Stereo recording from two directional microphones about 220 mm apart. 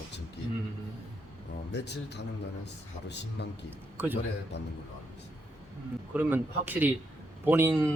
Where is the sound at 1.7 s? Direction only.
50° left (ahead or behind).